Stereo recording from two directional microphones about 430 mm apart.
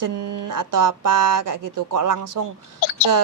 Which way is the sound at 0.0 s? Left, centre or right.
Right.